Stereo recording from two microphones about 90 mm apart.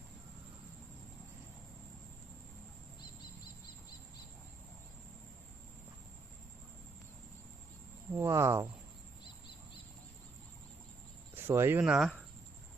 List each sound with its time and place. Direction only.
8.1 s speech: 30° right (ahead or behind)
11.3 s speech: 25° right (ahead or behind)
11.8 s speech: 10° right (ahead or behind)